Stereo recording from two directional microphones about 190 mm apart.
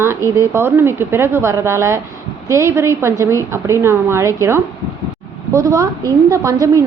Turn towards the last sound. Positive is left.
turn(degrees=-15)  # may be behind; listen again after turning